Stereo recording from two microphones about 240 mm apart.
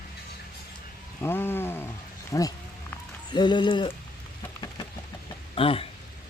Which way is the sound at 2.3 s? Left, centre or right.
Centre.